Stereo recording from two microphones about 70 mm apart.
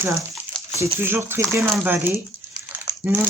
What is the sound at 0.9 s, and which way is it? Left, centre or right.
Speech, right.